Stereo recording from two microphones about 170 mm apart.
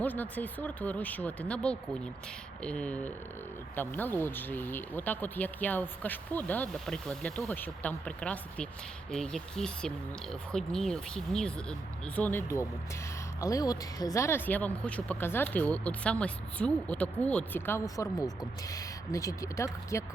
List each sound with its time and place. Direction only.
0.0 s speech: 10° left (ahead or behind)